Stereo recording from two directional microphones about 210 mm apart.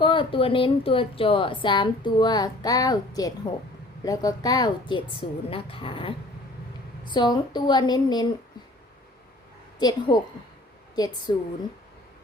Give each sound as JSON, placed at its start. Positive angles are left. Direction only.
{"t": 0.0, "sound": "a woman's voice", "side_deg": 25}
{"t": 9.7, "sound": "a woman's voice", "side_deg": 20}